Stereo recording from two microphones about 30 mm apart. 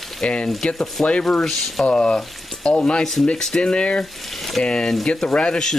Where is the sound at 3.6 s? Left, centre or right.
Left.